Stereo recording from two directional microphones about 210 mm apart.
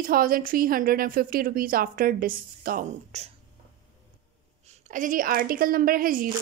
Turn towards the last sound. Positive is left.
turn(degrees=-40)  # may be behind; listen again after turning